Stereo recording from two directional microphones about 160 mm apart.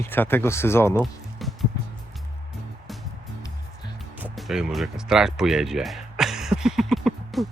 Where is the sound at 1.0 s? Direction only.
Centre (ahead or behind).